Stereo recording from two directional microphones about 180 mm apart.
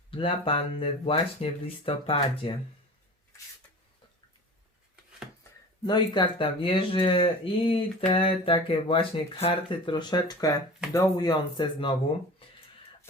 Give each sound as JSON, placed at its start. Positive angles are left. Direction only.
{"t": 0.1, "sound": "speech", "side_deg": 30}
{"t": 5.4, "sound": "speech", "side_deg": 25}